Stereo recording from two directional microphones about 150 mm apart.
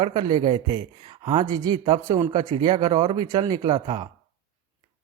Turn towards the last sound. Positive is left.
turn(degrees=-35)  # may be behind; listen again after turning